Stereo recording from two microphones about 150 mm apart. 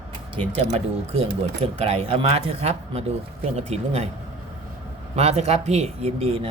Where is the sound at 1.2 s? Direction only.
40° right (ahead or behind).